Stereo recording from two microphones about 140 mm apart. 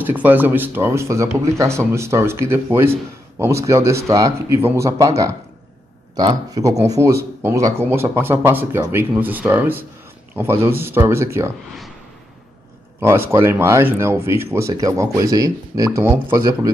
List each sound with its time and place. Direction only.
0.0 s speech: 15° right (ahead or behind)
13.3 s speech: 20° right (ahead or behind)